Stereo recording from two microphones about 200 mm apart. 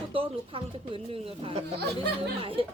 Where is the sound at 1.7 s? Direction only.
55° right (ahead or behind).